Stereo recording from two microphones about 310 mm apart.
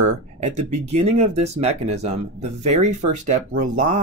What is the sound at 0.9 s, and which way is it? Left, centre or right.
Speech, centre.